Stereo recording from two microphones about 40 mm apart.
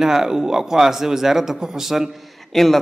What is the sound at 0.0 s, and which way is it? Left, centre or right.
Speech, centre.